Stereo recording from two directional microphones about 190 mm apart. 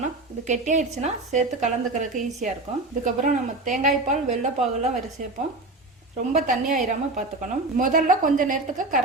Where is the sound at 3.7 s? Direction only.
40° right (ahead or behind).